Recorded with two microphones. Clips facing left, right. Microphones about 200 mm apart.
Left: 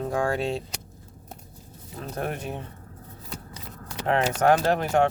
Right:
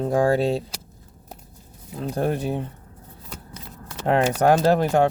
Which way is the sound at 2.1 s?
35° right (ahead or behind).